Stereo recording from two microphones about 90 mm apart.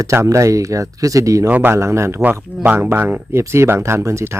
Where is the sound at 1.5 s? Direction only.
25° right (ahead or behind).